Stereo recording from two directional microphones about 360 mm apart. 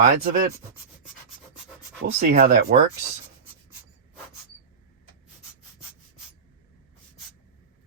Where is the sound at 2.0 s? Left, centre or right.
Right.